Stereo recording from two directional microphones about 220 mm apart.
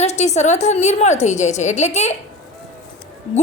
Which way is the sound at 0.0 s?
30° left (ahead or behind).